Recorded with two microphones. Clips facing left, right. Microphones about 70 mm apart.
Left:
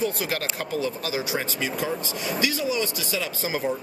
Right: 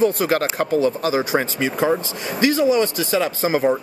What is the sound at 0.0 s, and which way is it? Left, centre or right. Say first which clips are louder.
Speech: right 9 dB; right.